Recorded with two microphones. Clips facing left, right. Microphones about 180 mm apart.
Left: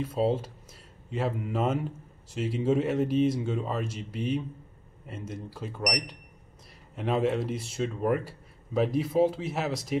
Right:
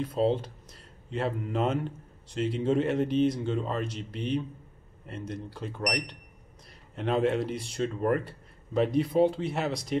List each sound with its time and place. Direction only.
0.0 s a man's voice: 5° left (ahead or behind)
7.0 s a man's voice: 5° left (ahead or behind)